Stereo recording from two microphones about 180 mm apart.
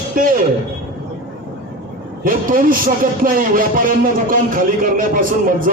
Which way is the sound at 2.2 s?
50° right (ahead or behind).